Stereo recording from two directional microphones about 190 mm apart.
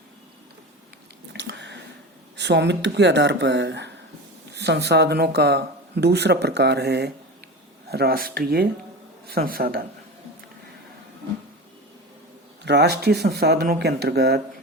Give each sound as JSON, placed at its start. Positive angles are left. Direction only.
{"t": 1.3, "sound": "a sound", "side_deg": -70}
{"t": 2.3, "sound": "speech", "side_deg": -65}
{"t": 12.6, "sound": "speech", "side_deg": -60}